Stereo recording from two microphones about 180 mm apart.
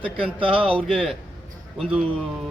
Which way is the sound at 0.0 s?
30° right (ahead or behind).